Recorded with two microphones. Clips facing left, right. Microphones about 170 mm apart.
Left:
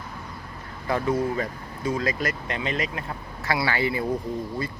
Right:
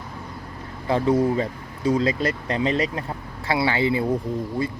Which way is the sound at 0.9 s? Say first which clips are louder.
Right 5 dB; 25° right (ahead or behind).